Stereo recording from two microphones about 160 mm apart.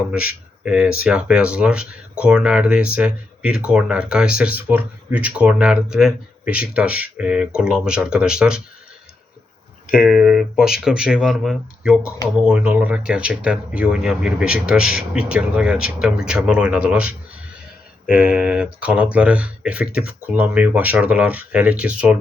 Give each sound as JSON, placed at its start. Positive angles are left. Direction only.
{"t": 0.6, "sound": "speech", "side_deg": -5}
{"t": 9.9, "sound": "speech", "side_deg": 0}